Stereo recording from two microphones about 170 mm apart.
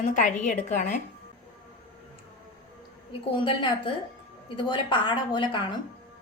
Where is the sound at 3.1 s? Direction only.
30° left (ahead or behind).